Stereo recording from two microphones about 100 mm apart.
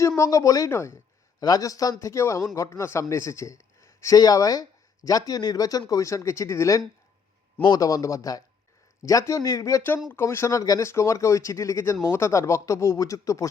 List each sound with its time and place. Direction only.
0.2 s a man's voice: 30° left (ahead or behind)